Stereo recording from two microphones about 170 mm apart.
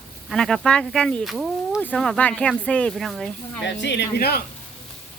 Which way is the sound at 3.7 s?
90° left.